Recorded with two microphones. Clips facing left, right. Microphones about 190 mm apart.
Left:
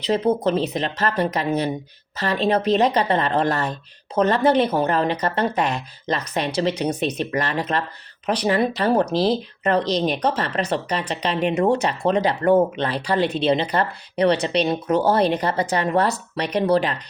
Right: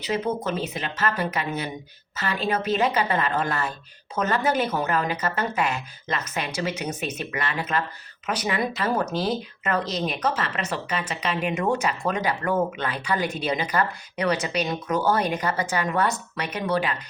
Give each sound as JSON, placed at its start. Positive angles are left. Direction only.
{"t": 0.1, "sound": "speech", "side_deg": 35}